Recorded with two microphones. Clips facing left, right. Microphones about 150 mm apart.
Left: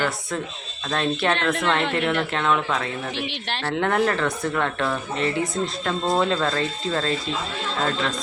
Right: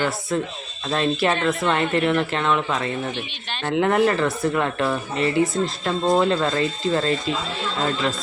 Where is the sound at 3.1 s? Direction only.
85° left.